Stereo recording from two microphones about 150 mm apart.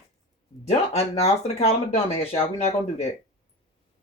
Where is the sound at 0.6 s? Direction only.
45° left (ahead or behind).